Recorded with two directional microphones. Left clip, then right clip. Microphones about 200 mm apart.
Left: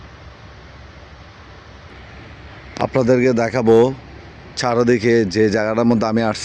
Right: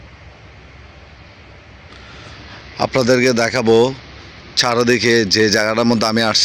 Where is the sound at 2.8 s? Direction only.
5° left (ahead or behind).